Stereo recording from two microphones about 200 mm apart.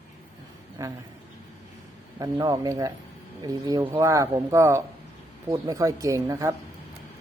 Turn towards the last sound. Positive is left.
turn(degrees=-15)  # may be behind; listen again after turning